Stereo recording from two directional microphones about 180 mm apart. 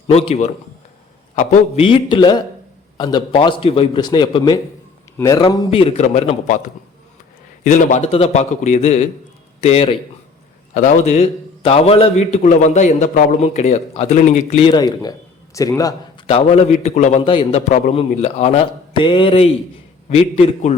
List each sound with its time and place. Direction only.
0.1 s a man's voice: 35° left (ahead or behind)
7.6 s a man's voice: 45° left (ahead or behind)
14.7 s a man's voice: 20° left (ahead or behind)
16.2 s a man's voice: 35° left (ahead or behind)